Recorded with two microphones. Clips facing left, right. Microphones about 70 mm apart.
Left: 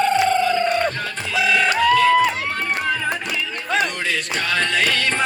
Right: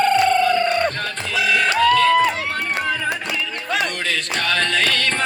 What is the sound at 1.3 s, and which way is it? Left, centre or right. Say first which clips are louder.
Music: even; centre.